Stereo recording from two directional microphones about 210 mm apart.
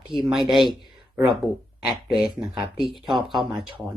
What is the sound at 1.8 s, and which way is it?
Speech, 5° right (ahead or behind).